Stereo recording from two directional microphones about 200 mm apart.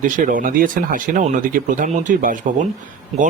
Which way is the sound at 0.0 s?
45° right (ahead or behind).